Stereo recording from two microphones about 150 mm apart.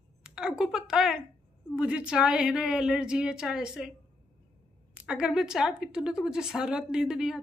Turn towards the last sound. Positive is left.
turn(degrees=-5)  # may be behind; listen again after turning